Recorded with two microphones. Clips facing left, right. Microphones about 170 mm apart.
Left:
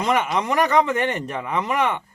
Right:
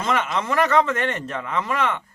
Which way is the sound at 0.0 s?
15° left (ahead or behind).